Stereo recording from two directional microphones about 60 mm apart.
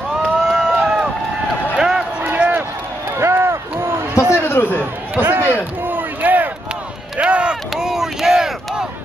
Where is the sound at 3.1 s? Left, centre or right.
Right.